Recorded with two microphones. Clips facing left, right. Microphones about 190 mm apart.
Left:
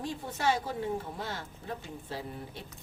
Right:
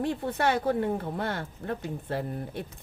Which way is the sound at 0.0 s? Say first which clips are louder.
Right 5 dB; 60° right (ahead or behind).